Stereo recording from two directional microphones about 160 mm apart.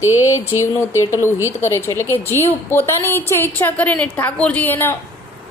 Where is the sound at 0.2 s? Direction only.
20° left (ahead or behind).